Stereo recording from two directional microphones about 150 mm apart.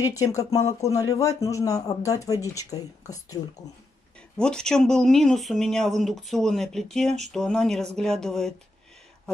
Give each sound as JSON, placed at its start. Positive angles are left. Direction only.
{"t": 0.0, "sound": "speech", "side_deg": 20}
{"t": 4.4, "sound": "speech", "side_deg": 5}